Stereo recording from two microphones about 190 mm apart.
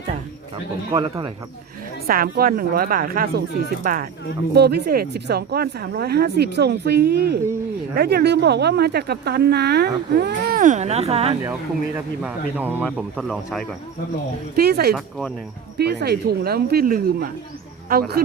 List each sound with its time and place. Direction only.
0.9 s speech: 20° right (ahead or behind)
2.0 s a woman's voice: 50° right (ahead or behind)
10.6 s speech: 40° right (ahead or behind)
12.2 s speech: 10° right (ahead or behind)
14.5 s a woman's voice: 55° right (ahead or behind)